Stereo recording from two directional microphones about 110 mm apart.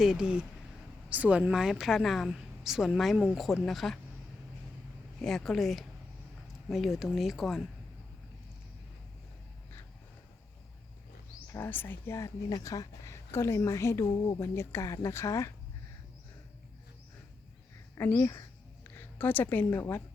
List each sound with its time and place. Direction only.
0.0 s a woman's voice: 5° right (ahead or behind)
5.2 s a woman's voice: 5° left (ahead or behind)
11.5 s a woman's voice: 20° left (ahead or behind)
18.2 s a woman's voice: 25° left (ahead or behind)